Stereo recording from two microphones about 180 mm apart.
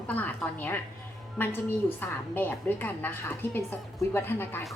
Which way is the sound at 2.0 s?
10° left (ahead or behind).